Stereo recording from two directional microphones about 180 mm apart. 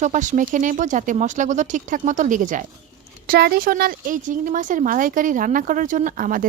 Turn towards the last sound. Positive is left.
turn(degrees=-50)  # may be behind; listen again after turning